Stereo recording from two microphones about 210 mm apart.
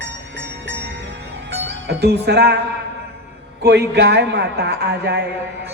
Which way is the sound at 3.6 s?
50° right (ahead or behind).